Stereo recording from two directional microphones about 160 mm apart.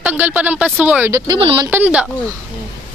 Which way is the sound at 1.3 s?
30° right (ahead or behind).